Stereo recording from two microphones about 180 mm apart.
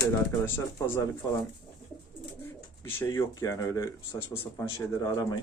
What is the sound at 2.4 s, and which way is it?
Speech, 10° left (ahead or behind).